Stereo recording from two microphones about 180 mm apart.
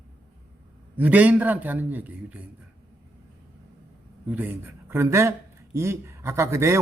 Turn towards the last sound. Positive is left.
turn(degrees=-15)  # may be behind; listen again after turning